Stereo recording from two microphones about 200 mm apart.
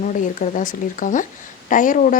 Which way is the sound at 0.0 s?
40° left (ahead or behind).